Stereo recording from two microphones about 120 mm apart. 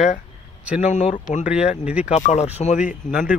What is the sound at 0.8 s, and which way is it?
Speech, 85° left.